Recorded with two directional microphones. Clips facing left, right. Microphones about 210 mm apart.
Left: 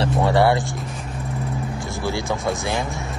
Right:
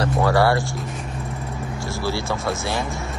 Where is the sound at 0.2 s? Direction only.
20° left (ahead or behind).